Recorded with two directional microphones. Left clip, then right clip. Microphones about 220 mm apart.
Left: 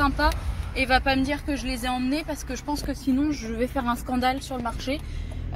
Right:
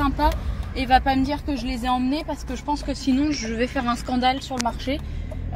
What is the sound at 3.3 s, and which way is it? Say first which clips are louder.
Speech: right 3 dB; centre (ahead or behind).